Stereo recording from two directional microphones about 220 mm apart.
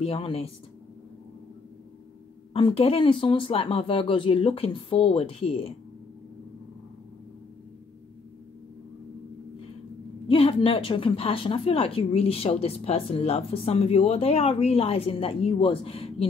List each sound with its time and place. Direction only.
0.0 s a woman's voice: 25° left (ahead or behind)
2.5 s a woman's voice: 25° left (ahead or behind)
10.2 s a woman's voice: 25° left (ahead or behind)